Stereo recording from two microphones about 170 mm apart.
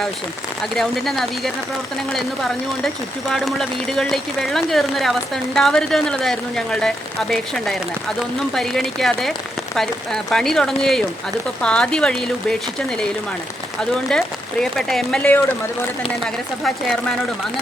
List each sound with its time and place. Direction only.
0.8 s speech: centre (ahead or behind)
13.9 s speech: 5° left (ahead or behind)